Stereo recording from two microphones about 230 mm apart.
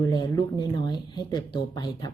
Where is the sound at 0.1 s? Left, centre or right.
Centre.